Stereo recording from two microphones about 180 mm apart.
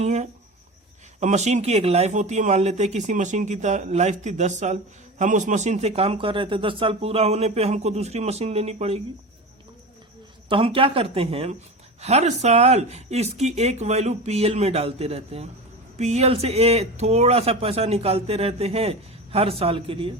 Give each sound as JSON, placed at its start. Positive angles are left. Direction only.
{"t": 0.0, "sound": "speech", "side_deg": -40}
{"t": 10.5, "sound": "speech", "side_deg": -30}